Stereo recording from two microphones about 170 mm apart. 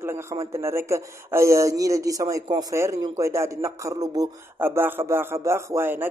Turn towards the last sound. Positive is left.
turn(degrees=-15)  # may be behind; listen again after turning